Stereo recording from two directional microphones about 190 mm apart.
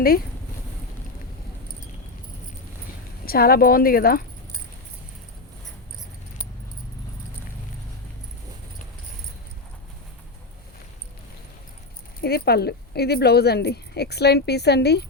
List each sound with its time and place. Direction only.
3.2 s a woman's voice: 50° left (ahead or behind)
12.2 s speech: 55° left (ahead or behind)